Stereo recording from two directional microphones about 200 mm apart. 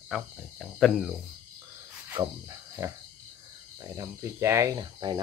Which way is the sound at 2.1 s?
15° right (ahead or behind).